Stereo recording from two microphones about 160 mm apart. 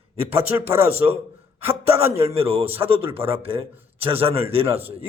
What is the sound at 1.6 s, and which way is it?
A man's voice, 40° right (ahead or behind).